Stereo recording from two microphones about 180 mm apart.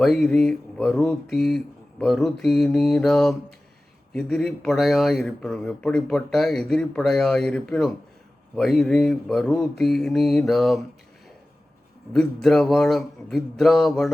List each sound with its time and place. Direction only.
0.0 s speech: 5° left (ahead or behind)
12.1 s speech: centre (ahead or behind)